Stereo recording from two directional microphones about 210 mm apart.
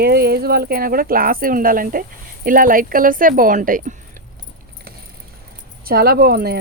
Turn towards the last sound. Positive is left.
turn(degrees=-45)  # may be behind; listen again after turning